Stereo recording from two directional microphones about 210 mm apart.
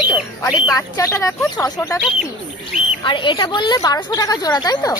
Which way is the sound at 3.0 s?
25° left (ahead or behind).